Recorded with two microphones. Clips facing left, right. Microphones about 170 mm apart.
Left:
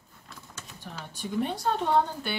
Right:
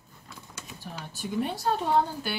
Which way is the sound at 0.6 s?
10° right (ahead or behind).